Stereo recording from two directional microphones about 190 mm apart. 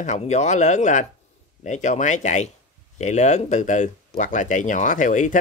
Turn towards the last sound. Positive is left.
turn(degrees=40)  # may be behind; listen again after turning